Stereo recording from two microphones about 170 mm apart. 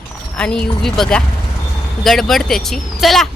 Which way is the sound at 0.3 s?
5° left (ahead or behind).